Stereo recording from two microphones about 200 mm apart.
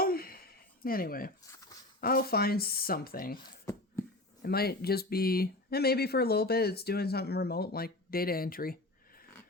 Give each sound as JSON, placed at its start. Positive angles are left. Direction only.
{"t": 0.0, "sound": "a sound", "side_deg": 50}
{"t": 1.5, "sound": "dog", "side_deg": 15}
{"t": 2.0, "sound": "speech", "side_deg": 50}
{"t": 4.4, "sound": "speech", "side_deg": 50}